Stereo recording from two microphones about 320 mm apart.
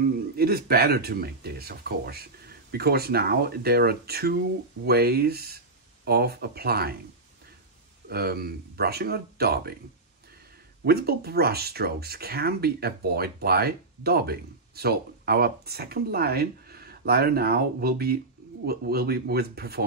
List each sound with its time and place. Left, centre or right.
0.4 s speech: right
8.1 s speech: right
10.9 s speech: right